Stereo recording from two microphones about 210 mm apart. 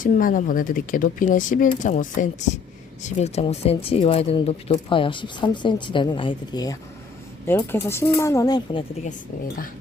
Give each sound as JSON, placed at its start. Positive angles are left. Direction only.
{"t": 0.0, "sound": "speech", "side_deg": 40}